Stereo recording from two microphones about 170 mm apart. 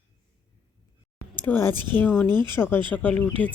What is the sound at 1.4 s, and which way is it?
A woman's voice, 10° left (ahead or behind).